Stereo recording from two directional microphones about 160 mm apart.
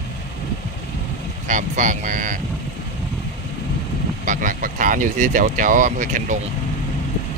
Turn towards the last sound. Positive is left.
turn(degrees=-55)  # may be behind; listen again after turning